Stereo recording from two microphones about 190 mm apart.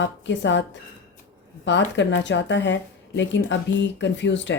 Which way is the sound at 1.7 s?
70° left (ahead or behind).